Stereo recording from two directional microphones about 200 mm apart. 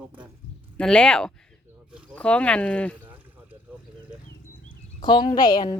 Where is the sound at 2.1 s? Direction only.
5° left (ahead or behind).